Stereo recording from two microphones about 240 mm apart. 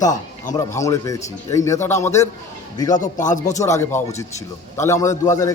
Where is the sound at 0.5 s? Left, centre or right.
Centre.